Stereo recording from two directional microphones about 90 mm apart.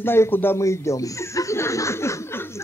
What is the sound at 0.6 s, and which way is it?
Chuckle, 35° left (ahead or behind).